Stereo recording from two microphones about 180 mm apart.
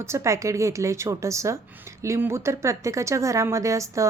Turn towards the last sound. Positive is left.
turn(degrees=-15)  # may be behind; listen again after turning